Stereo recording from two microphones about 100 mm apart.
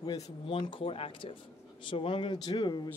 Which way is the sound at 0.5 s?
50° left (ahead or behind).